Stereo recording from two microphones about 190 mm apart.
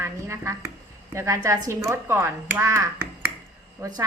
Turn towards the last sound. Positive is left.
turn(degrees=-20)  # may be behind; listen again after turning